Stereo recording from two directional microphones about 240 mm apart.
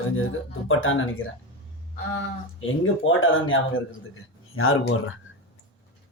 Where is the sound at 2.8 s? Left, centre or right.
Left.